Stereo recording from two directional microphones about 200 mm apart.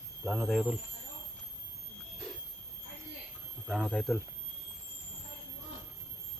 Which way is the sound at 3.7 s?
Centre (ahead or behind).